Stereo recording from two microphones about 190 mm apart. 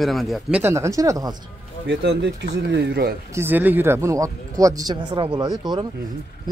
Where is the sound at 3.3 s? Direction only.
10° right (ahead or behind).